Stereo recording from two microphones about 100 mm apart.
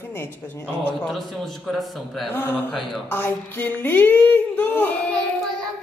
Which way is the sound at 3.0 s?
20° left (ahead or behind).